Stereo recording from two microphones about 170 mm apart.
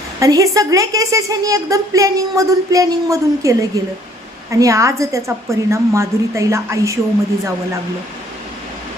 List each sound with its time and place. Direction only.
0.2 s a woman's voice: 20° right (ahead or behind)